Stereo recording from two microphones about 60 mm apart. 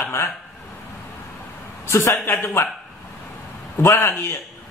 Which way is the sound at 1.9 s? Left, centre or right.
Left.